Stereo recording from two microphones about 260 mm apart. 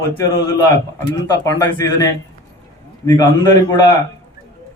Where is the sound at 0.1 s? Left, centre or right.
Centre.